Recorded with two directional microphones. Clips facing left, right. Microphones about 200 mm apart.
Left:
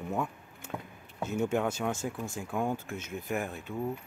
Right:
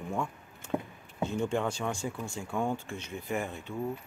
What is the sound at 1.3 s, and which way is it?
Speech, 5° left (ahead or behind).